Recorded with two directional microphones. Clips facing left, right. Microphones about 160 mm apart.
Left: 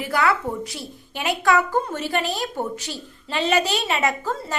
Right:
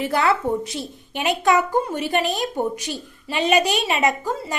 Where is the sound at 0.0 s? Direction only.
25° right (ahead or behind).